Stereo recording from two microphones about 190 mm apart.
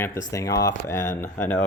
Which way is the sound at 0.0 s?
15° left (ahead or behind).